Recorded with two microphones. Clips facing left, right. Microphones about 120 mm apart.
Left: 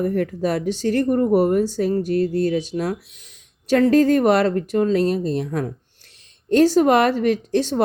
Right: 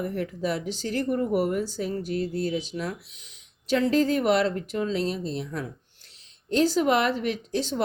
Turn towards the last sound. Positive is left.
turn(degrees=50)  # may be behind; listen again after turning